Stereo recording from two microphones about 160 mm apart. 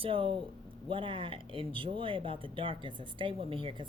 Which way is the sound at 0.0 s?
35° right (ahead or behind).